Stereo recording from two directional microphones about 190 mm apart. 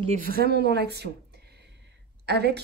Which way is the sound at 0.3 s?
55° right (ahead or behind).